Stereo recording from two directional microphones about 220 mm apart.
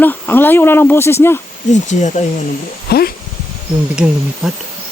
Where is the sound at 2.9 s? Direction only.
45° left (ahead or behind).